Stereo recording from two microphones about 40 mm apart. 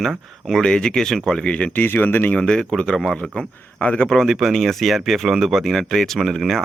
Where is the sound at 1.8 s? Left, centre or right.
Left.